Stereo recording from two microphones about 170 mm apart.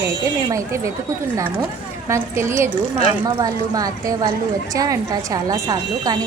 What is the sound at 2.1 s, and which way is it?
Speech, 15° right (ahead or behind).